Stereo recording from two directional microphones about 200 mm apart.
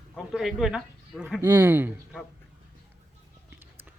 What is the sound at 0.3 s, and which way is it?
Speech, centre (ahead or behind).